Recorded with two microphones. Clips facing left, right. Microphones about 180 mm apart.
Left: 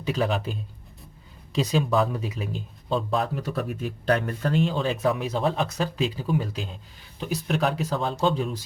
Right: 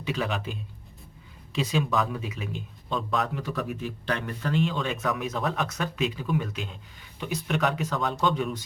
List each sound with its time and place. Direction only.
0.0 s speech: 35° left (ahead or behind)
1.5 s speech: 40° left (ahead or behind)
4.6 s speech: 35° left (ahead or behind)